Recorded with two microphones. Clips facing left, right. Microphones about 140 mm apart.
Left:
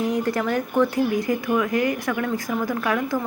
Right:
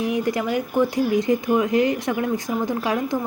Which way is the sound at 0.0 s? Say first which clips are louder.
Even; 15° right (ahead or behind).